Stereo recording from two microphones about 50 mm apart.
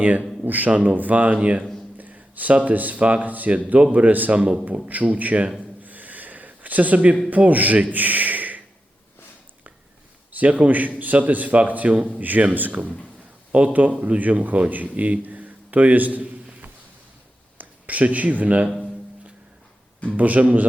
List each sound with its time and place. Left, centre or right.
0.4 s a man's voice: right
0.7 s a man's voice: right
5.8 s a sound: right
7.3 s a man's voice: right
10.3 s a man's voice: right
20.1 s a man's voice: right